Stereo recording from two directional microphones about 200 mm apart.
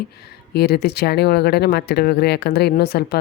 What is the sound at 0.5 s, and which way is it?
Speech, 55° left (ahead or behind).